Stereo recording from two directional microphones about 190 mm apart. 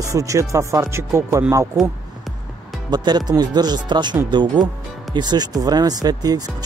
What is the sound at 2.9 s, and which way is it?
Speech, 20° right (ahead or behind).